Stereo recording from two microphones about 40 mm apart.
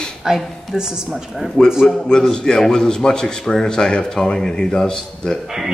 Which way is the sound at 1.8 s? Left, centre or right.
Centre.